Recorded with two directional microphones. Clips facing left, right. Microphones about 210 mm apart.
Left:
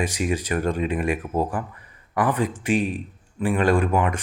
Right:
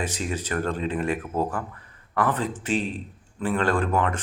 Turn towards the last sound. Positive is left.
turn(degrees=15)  # may be behind; listen again after turning